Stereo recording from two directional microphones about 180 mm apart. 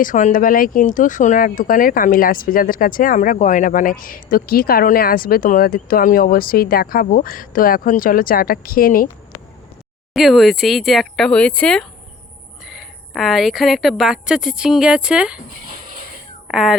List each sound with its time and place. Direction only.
0.0 s speech: 45° left (ahead or behind)
10.2 s speech: centre (ahead or behind)
16.5 s speech: centre (ahead or behind)